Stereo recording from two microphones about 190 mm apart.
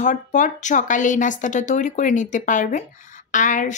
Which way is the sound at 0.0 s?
40° left (ahead or behind).